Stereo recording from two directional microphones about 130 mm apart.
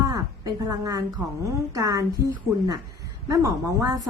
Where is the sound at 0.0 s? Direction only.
25° right (ahead or behind).